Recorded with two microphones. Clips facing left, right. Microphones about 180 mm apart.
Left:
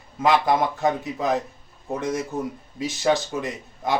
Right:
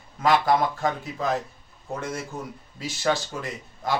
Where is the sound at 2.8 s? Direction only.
20° left (ahead or behind).